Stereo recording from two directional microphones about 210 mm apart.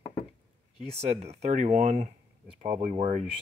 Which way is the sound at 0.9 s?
30° right (ahead or behind).